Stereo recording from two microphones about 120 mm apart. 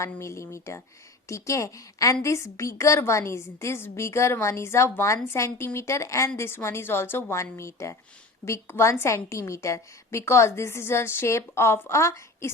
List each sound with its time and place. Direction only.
0.0 s a woman's voice: 25° left (ahead or behind)